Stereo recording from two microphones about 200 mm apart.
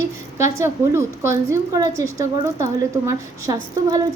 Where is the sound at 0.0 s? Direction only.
15° right (ahead or behind).